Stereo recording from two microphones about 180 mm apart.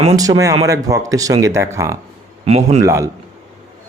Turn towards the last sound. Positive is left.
turn(degrees=-15)  # may be behind; listen again after turning